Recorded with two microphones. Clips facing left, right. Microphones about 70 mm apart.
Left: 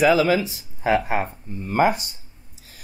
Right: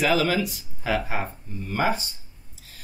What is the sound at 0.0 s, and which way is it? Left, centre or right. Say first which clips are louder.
Speech: left 5 dB; left.